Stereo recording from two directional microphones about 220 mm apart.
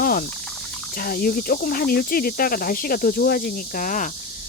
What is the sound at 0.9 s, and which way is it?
Speech, 40° left (ahead or behind).